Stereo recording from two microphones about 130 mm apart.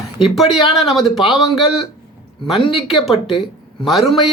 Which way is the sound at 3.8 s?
Centre (ahead or behind).